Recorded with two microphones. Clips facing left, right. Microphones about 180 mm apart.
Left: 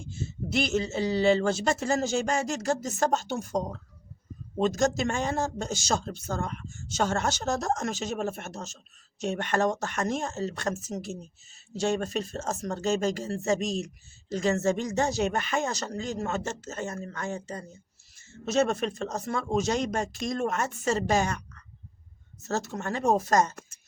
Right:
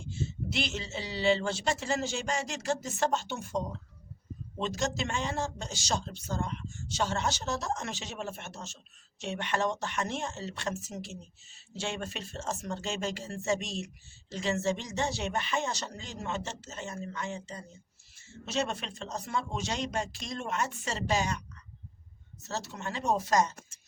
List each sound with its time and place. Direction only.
0.0 s speech: 45° left (ahead or behind)